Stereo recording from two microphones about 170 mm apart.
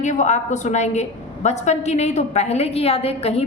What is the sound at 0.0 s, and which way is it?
A woman's voice, 45° left (ahead or behind).